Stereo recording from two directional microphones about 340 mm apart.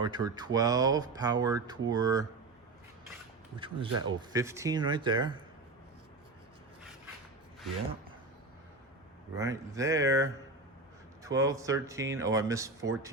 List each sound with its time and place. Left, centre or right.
0.0 s speech: centre
3.6 s speech: centre
9.3 s speech: centre